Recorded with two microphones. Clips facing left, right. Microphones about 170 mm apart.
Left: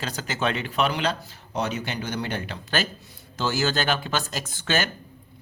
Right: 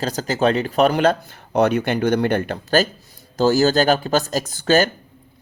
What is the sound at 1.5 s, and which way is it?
Speech, 60° right (ahead or behind).